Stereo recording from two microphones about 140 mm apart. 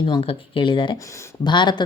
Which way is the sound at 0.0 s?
40° left (ahead or behind).